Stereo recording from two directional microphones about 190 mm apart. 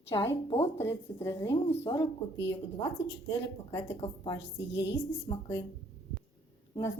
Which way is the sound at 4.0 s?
20° left (ahead or behind).